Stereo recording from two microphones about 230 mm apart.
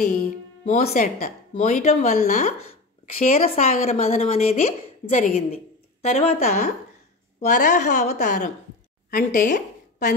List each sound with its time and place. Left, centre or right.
0.7 s a woman's voice: left
8.1 s a woman's voice: left